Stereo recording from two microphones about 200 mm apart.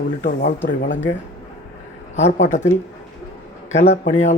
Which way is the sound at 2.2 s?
35° left (ahead or behind).